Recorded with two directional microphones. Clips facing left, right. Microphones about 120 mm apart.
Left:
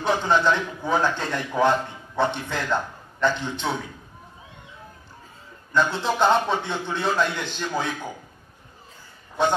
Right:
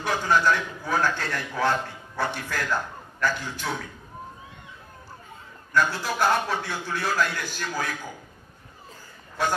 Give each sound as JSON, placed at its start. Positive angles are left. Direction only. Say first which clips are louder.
{"t": 0.0, "sound": "a man's voice", "louder": "left 2 dB", "side_deg": 20}
{"t": 5.7, "sound": "a man's voice", "louder": "left 2 dB", "side_deg": 20}
{"t": 9.4, "sound": "a man's voice", "louder": "left 4 dB", "side_deg": 25}